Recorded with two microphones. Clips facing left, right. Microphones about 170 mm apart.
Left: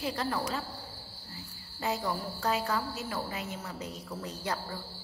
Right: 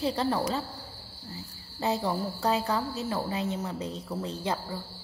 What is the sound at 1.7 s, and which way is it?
A woman's voice, 30° right (ahead or behind).